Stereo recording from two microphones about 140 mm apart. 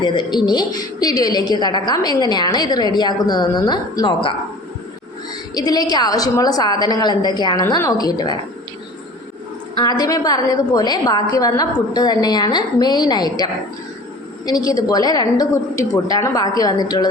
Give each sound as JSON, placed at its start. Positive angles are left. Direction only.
{"t": 0.0, "sound": "a woman's voice", "side_deg": 35}
{"t": 5.5, "sound": "a woman's voice", "side_deg": 30}
{"t": 9.7, "sound": "a woman's voice", "side_deg": 30}